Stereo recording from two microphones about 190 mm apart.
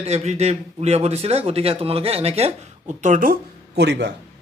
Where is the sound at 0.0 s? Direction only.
35° right (ahead or behind).